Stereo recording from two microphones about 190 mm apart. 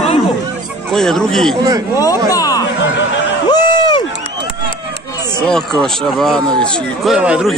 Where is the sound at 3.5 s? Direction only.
20° left (ahead or behind).